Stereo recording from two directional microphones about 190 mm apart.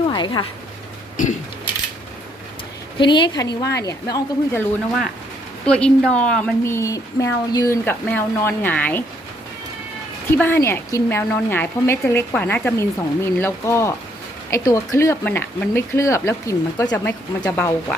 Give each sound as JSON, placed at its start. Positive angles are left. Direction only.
{"t": 0.1, "sound": "speech", "side_deg": 25}
{"t": 1.1, "sound": "a sound", "side_deg": 45}
{"t": 3.0, "sound": "speech", "side_deg": 25}
{"t": 5.6, "sound": "speech", "side_deg": 5}
{"t": 10.2, "sound": "speech", "side_deg": 10}